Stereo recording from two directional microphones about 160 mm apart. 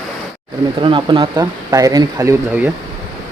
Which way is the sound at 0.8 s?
30° right (ahead or behind).